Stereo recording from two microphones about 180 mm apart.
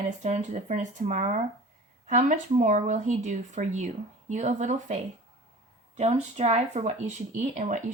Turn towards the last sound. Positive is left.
turn(degrees=-45)  # may be behind; listen again after turning